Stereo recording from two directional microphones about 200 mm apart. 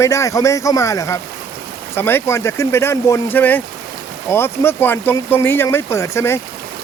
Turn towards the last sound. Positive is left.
turn(degrees=15)  # may be behind; listen again after turning